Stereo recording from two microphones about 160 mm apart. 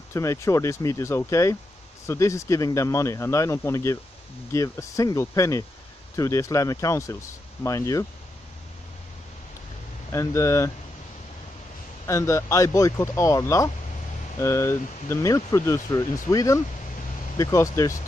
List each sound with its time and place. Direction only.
0.1 s speech: 20° left (ahead or behind)
10.1 s speech: 20° left (ahead or behind)
12.1 s speech: 20° left (ahead or behind)